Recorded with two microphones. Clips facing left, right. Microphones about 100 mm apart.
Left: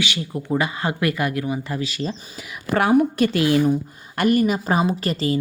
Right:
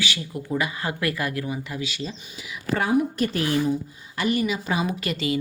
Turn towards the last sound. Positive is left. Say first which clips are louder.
# left 4 dB
turn(degrees=35)  # may be behind; listen again after turning